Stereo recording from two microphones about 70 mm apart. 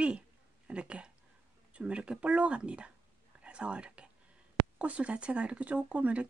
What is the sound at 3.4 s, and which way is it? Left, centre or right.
Whispering, centre.